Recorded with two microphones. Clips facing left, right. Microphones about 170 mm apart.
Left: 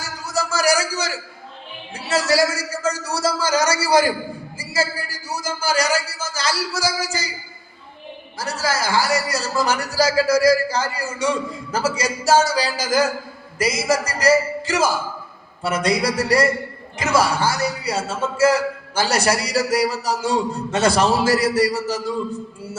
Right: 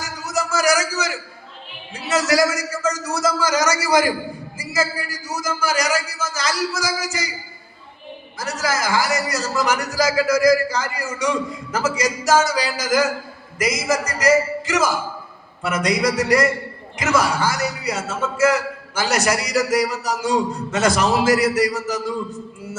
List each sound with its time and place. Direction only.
0.3 s a sound: 30° left (ahead or behind)
2.0 s speech: 30° left (ahead or behind)
8.4 s speech: 30° left (ahead or behind)